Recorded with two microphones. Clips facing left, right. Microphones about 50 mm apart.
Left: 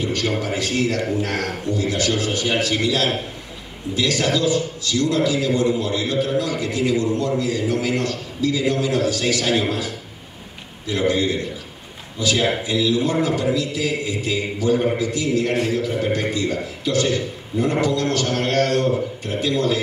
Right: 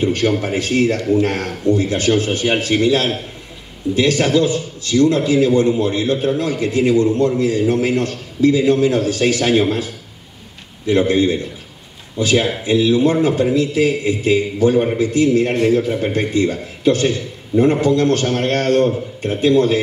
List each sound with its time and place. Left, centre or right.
0.0 s a sound: right
0.4 s a man's voice: right
10.9 s a man's voice: right